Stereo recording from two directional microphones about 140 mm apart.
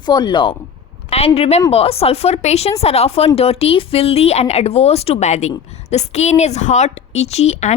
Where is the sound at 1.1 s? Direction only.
45° left (ahead or behind).